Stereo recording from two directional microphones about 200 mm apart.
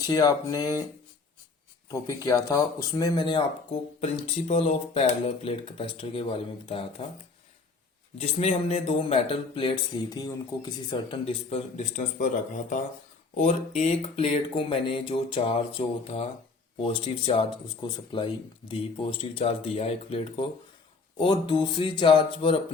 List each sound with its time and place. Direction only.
0.0 s speech: 20° left (ahead or behind)
1.9 s speech: 15° left (ahead or behind)
4.0 s speech: 35° left (ahead or behind)
8.2 s speech: 30° left (ahead or behind)
13.3 s speech: 35° left (ahead or behind)